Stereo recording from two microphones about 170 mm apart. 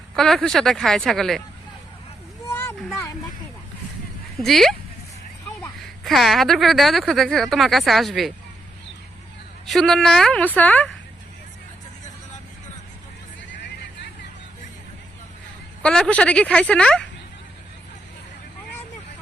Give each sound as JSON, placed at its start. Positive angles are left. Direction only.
{"t": 0.2, "sound": "speech", "side_deg": 0}
{"t": 2.5, "sound": "a sound", "side_deg": 15}
{"t": 4.4, "sound": "speech", "side_deg": 0}
{"t": 6.1, "sound": "speech", "side_deg": 0}
{"t": 9.6, "sound": "speech", "side_deg": 0}
{"t": 15.8, "sound": "a woman's voice", "side_deg": 5}